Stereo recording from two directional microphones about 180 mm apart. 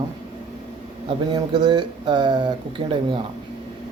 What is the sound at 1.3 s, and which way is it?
Speech, 25° right (ahead or behind).